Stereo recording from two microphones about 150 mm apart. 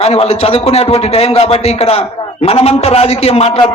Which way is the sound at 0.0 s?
40° left (ahead or behind).